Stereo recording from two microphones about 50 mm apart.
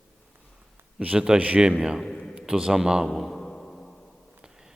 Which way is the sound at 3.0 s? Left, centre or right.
Centre.